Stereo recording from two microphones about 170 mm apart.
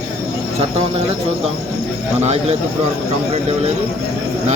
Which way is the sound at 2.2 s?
40° right (ahead or behind).